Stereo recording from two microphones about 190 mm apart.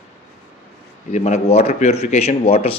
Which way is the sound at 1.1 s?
40° left (ahead or behind).